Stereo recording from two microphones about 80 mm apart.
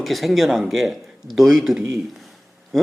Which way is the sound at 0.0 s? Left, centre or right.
Centre.